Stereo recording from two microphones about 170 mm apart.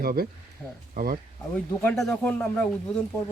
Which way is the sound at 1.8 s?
5° left (ahead or behind).